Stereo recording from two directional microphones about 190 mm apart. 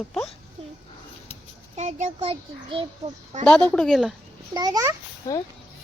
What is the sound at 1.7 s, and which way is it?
A child's voice, 35° right (ahead or behind).